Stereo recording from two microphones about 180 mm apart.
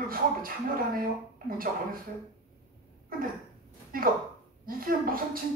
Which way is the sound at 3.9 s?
55° right (ahead or behind).